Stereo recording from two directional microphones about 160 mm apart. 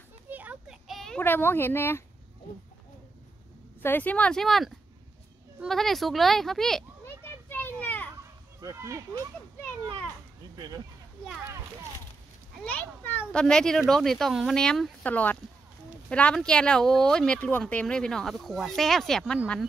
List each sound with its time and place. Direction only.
0.3 s a sound: 10° right (ahead or behind)
1.2 s speech: 15° left (ahead or behind)
3.8 s speech: 10° left (ahead or behind)
7.4 s children playing: 10° left (ahead or behind)
8.5 s speech: 20° right (ahead or behind)
10.5 s speech: 25° right (ahead or behind)
12.6 s speech: 10° left (ahead or behind)